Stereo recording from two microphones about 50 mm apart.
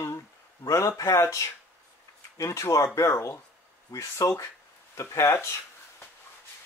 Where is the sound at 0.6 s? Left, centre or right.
Left.